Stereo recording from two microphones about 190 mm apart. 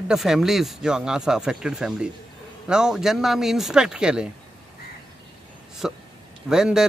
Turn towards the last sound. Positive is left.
turn(degrees=-5)  # may be behind; listen again after turning